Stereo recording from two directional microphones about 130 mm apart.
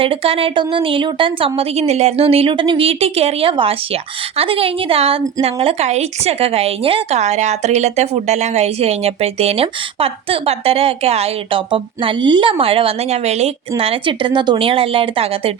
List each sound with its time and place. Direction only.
0.0 s a woman's voice: 45° right (ahead or behind)